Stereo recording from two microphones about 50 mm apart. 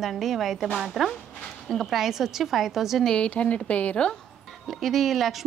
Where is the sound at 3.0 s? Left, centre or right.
Centre.